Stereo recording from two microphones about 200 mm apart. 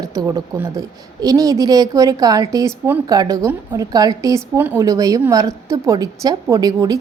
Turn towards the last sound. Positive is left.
turn(degrees=-20)  # may be behind; listen again after turning